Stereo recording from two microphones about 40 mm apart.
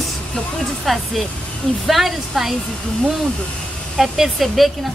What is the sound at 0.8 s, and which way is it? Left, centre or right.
Speech, centre.